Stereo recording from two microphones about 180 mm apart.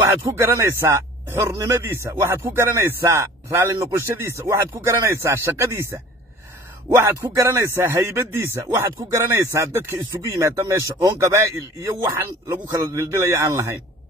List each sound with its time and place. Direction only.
0.3 s speech: 10° right (ahead or behind)
7.0 s speech: 15° right (ahead or behind)